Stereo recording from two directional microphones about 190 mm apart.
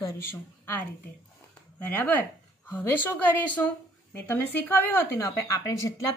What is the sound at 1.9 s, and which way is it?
A woman's voice, 10° left (ahead or behind).